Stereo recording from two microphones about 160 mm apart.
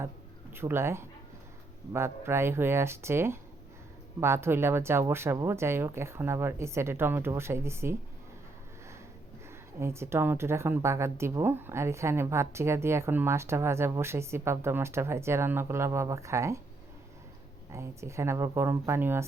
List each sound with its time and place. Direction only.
0.5 s speech: 15° right (ahead or behind)
9.7 s speech: 15° right (ahead or behind)
17.7 s speech: 15° right (ahead or behind)